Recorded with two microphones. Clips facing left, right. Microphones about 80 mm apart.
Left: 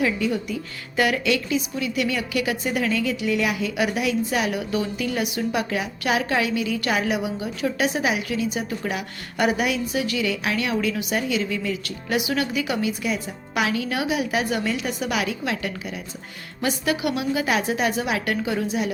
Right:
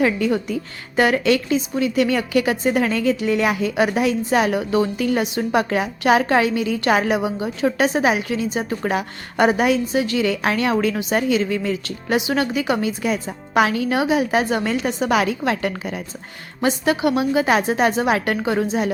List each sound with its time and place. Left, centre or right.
0.0 s a woman's voice: right
0.9 s a woman's voice: right
14.8 s a woman's voice: right
15.1 s a woman's voice: right
16.6 s a woman's voice: right